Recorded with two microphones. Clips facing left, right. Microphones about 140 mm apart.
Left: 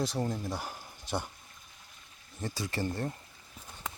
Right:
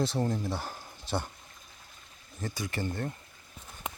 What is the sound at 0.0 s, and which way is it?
Speech, 10° left (ahead or behind).